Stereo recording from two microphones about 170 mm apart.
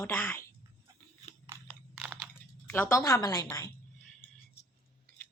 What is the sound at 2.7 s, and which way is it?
Speech, 15° left (ahead or behind).